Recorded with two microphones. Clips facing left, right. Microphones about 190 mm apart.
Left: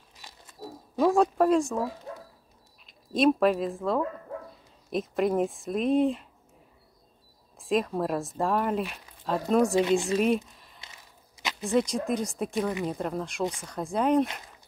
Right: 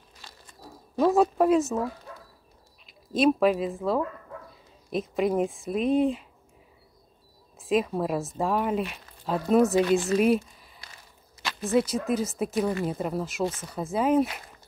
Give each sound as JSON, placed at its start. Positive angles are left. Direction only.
{"t": 0.6, "sound": "a sound", "side_deg": 20}
{"t": 0.9, "sound": "speech", "side_deg": 0}
{"t": 3.1, "sound": "speech", "side_deg": 0}
{"t": 7.6, "sound": "speech", "side_deg": 0}
{"t": 9.8, "sound": "speech", "side_deg": 20}
{"t": 10.1, "sound": "speech", "side_deg": -5}
{"t": 11.7, "sound": "speech", "side_deg": -5}